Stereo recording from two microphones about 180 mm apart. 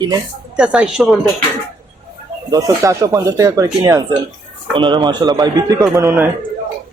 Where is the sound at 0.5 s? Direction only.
5° right (ahead or behind).